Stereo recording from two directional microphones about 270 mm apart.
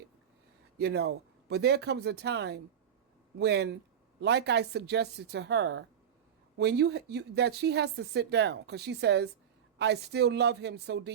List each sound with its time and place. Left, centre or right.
0.8 s speech: right